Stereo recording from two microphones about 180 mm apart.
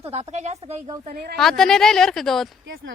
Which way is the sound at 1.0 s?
55° right (ahead or behind).